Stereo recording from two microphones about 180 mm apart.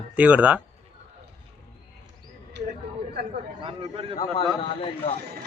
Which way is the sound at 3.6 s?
30° right (ahead or behind).